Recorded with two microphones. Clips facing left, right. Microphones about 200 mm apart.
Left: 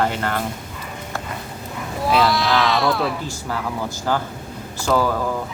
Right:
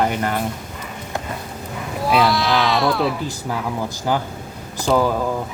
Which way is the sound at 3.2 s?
15° right (ahead or behind).